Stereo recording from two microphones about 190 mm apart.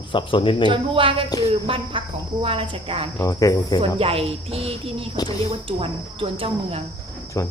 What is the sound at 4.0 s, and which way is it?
Speech, 30° right (ahead or behind).